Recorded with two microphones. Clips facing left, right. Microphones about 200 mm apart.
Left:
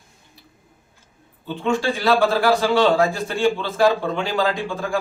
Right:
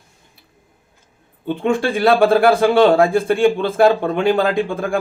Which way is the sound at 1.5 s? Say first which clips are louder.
Right 4 dB; 55° right (ahead or behind).